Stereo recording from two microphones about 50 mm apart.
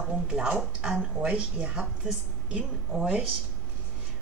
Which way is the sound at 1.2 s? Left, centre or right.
Right.